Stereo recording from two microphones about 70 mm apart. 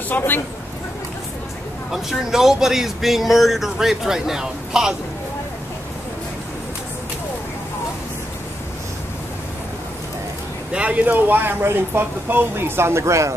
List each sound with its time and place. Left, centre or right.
1.9 s speech: centre
10.7 s speech: centre; by 13.3 s right